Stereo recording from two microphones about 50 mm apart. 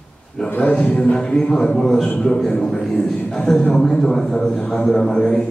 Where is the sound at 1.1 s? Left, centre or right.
Centre.